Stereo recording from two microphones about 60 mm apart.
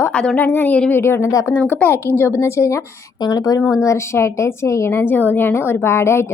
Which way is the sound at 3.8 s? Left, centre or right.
Left.